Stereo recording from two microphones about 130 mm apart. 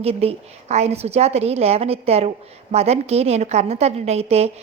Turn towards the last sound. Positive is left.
turn(degrees=-55)  # may be behind; listen again after turning